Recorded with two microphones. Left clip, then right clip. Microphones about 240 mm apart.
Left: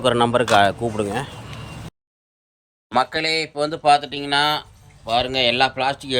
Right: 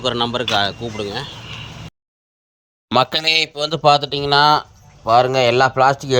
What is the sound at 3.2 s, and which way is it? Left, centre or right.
Speech, centre.